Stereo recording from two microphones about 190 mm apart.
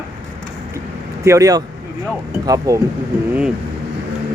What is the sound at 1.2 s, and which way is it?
Speech, 15° right (ahead or behind).